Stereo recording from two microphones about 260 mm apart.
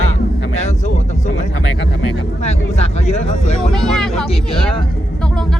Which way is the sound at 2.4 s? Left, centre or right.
Left.